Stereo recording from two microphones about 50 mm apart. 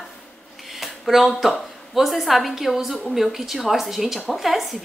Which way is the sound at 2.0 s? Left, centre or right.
Centre.